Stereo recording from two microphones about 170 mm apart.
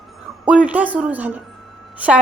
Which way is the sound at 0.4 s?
5° right (ahead or behind).